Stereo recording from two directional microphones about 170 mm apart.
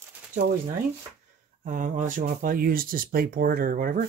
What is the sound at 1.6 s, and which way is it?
Speech, 50° right (ahead or behind).